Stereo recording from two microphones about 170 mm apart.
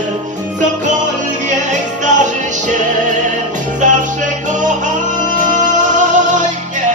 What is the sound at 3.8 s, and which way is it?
Music, 45° right (ahead or behind).